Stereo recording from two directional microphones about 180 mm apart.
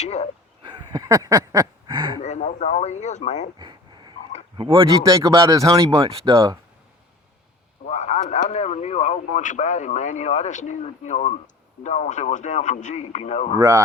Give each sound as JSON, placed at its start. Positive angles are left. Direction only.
{"t": 0.0, "sound": "speech", "side_deg": 35}
{"t": 0.6, "sound": "a sound", "side_deg": -25}
{"t": 2.2, "sound": "speech", "side_deg": 40}
{"t": 3.6, "sound": "a sound", "side_deg": -25}
{"t": 4.5, "sound": "speech", "side_deg": -30}
{"t": 7.9, "sound": "speech", "side_deg": 40}
{"t": 13.6, "sound": "speech", "side_deg": -20}